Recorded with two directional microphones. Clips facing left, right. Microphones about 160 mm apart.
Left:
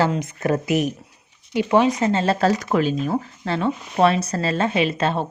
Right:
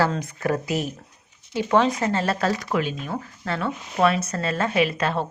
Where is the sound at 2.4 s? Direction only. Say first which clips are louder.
Left 5 dB; 40° left (ahead or behind).